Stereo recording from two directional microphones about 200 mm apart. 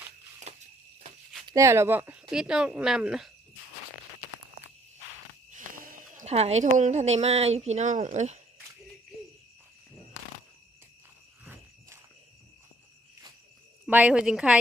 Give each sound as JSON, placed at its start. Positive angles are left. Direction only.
{"t": 0.5, "sound": "a sound", "side_deg": -35}
{"t": 1.5, "sound": "speech", "side_deg": -15}
{"t": 5.5, "sound": "speech", "side_deg": -40}
{"t": 13.8, "sound": "speech", "side_deg": -5}